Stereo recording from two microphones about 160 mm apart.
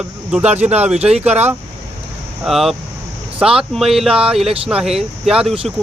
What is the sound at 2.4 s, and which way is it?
Speech, centre (ahead or behind).